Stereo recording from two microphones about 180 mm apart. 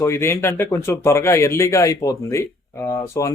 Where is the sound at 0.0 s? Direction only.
15° left (ahead or behind).